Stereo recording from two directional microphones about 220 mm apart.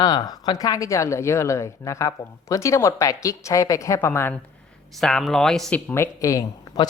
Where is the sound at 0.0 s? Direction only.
20° left (ahead or behind).